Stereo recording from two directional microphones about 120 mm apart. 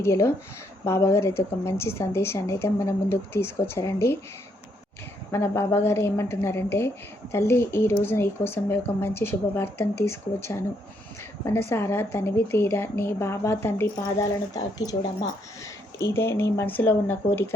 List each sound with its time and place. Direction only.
0.0 s a woman's voice: 20° left (ahead or behind)
5.3 s a woman's voice: 20° left (ahead or behind)
11.7 s a woman's voice: 20° left (ahead or behind)
14.5 s speech: 30° left (ahead or behind)
16.0 s a woman's voice: 20° left (ahead or behind)